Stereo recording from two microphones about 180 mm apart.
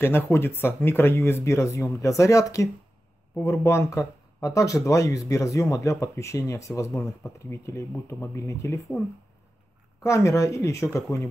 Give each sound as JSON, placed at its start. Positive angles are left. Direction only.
{"t": 0.0, "sound": "speech", "side_deg": 10}
{"t": 10.0, "sound": "speech", "side_deg": 15}